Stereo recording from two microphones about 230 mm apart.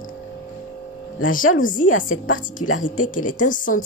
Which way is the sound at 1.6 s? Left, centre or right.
Left.